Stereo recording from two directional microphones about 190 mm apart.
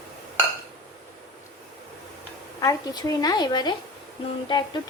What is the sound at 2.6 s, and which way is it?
Speech, 20° left (ahead or behind).